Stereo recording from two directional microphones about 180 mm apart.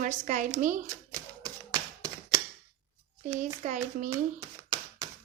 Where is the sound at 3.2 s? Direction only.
45° right (ahead or behind).